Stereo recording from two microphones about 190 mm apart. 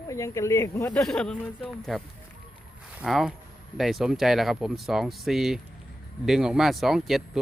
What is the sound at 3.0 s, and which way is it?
Speech, centre (ahead or behind).